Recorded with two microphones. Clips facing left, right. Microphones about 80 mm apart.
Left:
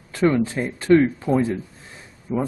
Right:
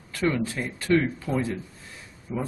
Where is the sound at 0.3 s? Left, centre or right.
Left.